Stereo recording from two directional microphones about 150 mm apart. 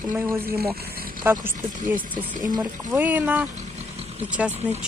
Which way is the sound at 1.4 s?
10° right (ahead or behind).